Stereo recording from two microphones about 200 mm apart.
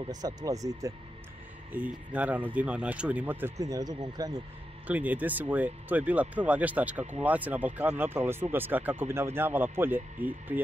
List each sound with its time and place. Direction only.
0.1 s speech: 20° right (ahead or behind)
4.8 s speech: 10° right (ahead or behind)